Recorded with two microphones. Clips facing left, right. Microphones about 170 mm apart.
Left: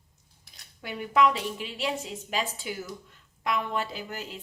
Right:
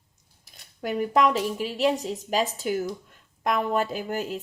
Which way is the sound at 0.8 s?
40° right (ahead or behind).